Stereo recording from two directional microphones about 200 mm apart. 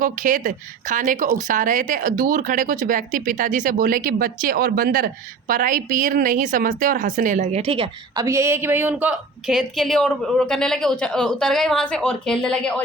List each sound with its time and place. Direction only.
0.0 s a woman's voice: 40° right (ahead or behind); by 8.2 s 25° right (ahead or behind)
8.2 s a woman's voice: 15° right (ahead or behind); by 12.8 s 5° left (ahead or behind)